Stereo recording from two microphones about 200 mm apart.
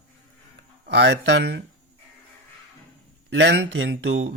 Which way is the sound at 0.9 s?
60° right (ahead or behind).